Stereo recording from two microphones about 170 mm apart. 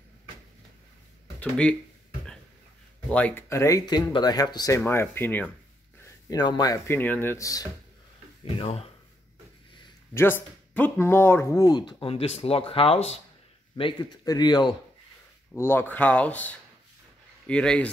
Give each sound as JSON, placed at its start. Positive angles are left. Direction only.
{"t": 1.4, "sound": "speech", "side_deg": 5}
{"t": 3.1, "sound": "speech", "side_deg": 10}
{"t": 6.2, "sound": "speech", "side_deg": 25}
{"t": 8.5, "sound": "speech", "side_deg": 35}
{"t": 10.1, "sound": "speech", "side_deg": 15}
{"t": 15.5, "sound": "speech", "side_deg": 15}